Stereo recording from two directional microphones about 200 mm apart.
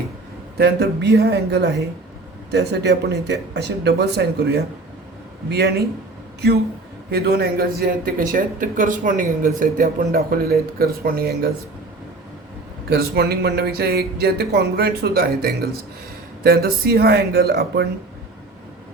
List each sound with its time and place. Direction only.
0.6 s speech: 55° right (ahead or behind)
7.1 s speech: 50° right (ahead or behind)
12.9 s speech: 50° right (ahead or behind)